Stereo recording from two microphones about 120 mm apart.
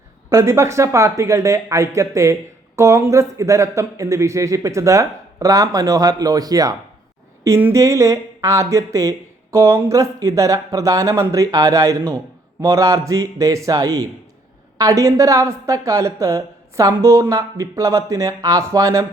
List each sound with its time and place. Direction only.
0.3 s speech: 20° right (ahead or behind)